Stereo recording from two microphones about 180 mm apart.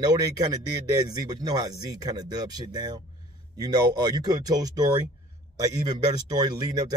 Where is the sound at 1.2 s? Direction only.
20° right (ahead or behind).